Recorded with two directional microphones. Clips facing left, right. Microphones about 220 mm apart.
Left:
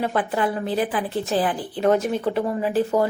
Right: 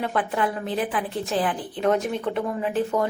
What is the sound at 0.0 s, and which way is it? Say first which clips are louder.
Speech: left 2 dB; centre (ahead or behind).